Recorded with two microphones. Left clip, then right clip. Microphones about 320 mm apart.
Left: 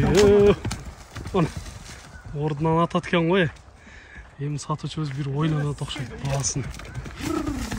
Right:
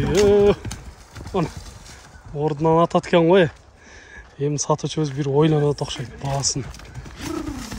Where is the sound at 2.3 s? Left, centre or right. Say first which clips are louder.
Right 5 dB; centre.